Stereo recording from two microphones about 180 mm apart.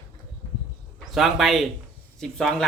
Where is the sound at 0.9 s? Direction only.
Centre (ahead or behind).